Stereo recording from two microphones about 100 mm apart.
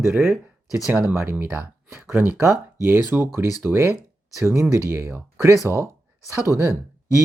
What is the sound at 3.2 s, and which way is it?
Speech, 25° right (ahead or behind).